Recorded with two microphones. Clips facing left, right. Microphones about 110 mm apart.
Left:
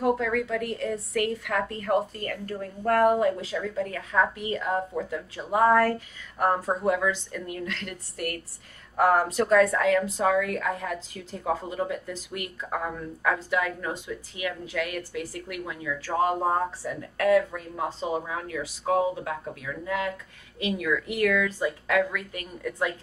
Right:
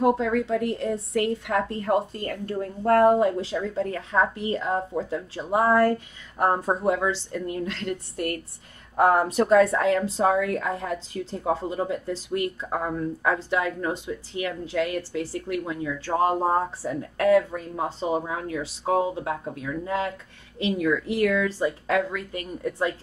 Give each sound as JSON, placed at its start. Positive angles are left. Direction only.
{"t": 0.0, "sound": "a woman's voice", "side_deg": -25}